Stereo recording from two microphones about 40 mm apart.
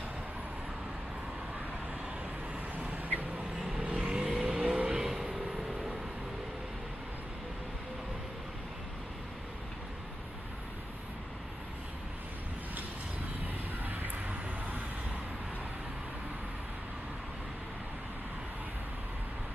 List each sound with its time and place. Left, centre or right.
2.7 s vehicle: right
5.0 s vehicle: centre